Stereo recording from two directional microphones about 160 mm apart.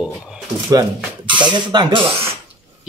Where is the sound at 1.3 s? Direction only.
30° right (ahead or behind).